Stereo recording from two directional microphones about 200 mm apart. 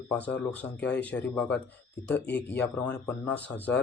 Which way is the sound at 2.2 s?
60° left (ahead or behind).